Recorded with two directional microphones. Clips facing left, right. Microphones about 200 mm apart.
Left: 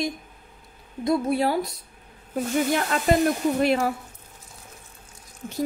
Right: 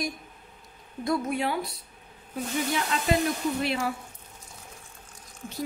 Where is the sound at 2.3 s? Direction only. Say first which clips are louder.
Left 6 dB; 55° left (ahead or behind).